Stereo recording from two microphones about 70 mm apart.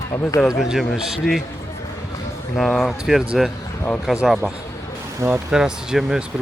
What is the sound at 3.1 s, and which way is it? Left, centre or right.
A man's voice, centre.